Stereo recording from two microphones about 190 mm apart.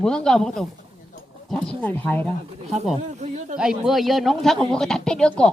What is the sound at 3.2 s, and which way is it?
Speech, 40° right (ahead or behind).